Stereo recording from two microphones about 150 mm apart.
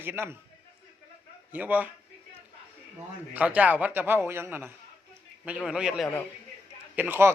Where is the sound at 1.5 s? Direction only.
10° right (ahead or behind).